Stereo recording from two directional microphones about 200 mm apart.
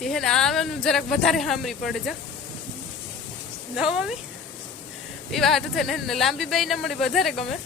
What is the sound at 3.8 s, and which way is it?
Speech, 5° right (ahead or behind).